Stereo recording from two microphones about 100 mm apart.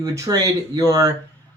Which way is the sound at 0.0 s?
35° right (ahead or behind).